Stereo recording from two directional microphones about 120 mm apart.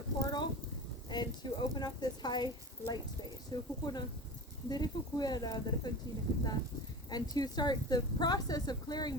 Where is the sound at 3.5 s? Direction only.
35° left (ahead or behind).